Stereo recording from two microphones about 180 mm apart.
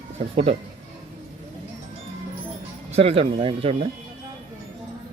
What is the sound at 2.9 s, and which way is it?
Speech, 35° right (ahead or behind).